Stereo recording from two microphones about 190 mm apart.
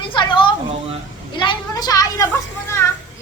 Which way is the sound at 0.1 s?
25° left (ahead or behind).